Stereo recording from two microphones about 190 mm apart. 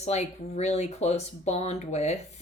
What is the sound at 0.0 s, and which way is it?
A woman's voice, 35° left (ahead or behind).